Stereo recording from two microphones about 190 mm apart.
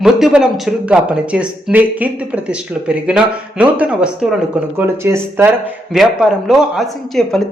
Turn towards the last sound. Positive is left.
turn(degrees=0)  # may be behind; listen again after turning